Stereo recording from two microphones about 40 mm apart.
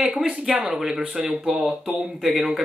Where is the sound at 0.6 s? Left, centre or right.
Centre.